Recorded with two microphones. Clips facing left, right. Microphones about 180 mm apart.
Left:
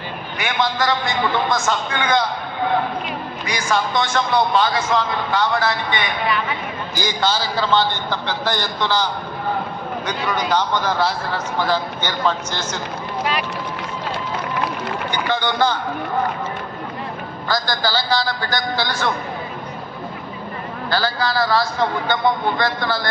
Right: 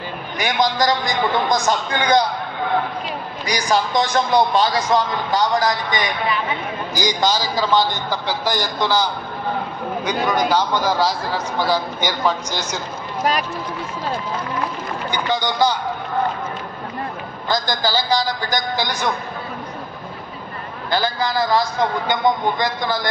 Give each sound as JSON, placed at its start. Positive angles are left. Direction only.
{"t": 0.4, "sound": "a man's voice", "side_deg": -40}
{"t": 3.4, "sound": "a man's voice", "side_deg": -35}
{"t": 7.0, "sound": "a man's voice", "side_deg": -15}
{"t": 10.5, "sound": "a man's voice", "side_deg": -10}
{"t": 13.2, "sound": "a man's voice", "side_deg": -40}
{"t": 14.1, "sound": "speech", "side_deg": 75}
{"t": 15.0, "sound": "a man's voice", "side_deg": -10}
{"t": 17.5, "sound": "a man's voice", "side_deg": -15}
{"t": 20.9, "sound": "a man's voice", "side_deg": -20}